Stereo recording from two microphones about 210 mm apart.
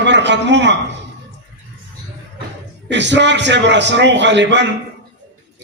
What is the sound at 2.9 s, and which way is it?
A man's voice, 55° right (ahead or behind).